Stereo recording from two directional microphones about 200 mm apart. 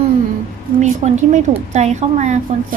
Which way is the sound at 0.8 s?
35° right (ahead or behind).